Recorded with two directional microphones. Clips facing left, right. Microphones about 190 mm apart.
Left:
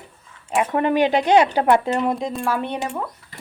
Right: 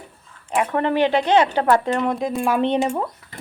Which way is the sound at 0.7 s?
15° left (ahead or behind).